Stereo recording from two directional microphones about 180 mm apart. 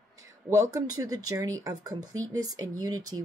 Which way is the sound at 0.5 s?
15° right (ahead or behind).